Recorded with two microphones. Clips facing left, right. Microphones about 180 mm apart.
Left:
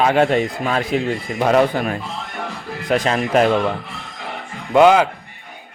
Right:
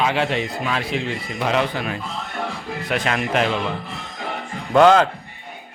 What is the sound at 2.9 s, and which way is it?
Speech, 35° left (ahead or behind).